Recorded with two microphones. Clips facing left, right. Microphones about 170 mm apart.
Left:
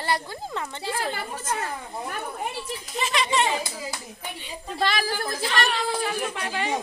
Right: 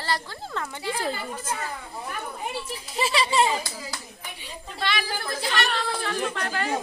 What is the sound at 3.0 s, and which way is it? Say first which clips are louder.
Speech: right 2 dB; 30° right (ahead or behind).